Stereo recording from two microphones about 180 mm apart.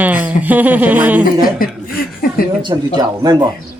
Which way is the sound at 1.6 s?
55° left (ahead or behind).